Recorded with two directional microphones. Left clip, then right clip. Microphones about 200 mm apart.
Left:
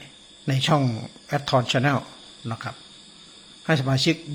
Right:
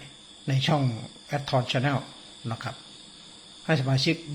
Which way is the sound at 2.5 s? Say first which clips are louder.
Left 2 dB; 10° left (ahead or behind).